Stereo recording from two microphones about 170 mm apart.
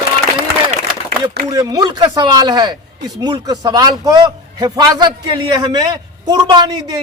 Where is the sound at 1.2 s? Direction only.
20° right (ahead or behind).